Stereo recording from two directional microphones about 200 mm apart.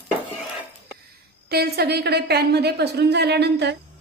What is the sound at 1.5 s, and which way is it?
A woman's voice, 50° right (ahead or behind).